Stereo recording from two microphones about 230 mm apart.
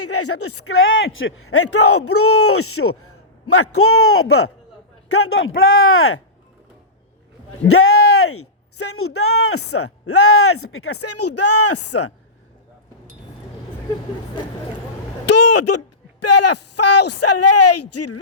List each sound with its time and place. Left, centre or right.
0.0 s a man's voice: left
7.7 s a man's voice: left
15.3 s a sound: left
16.2 s speech: left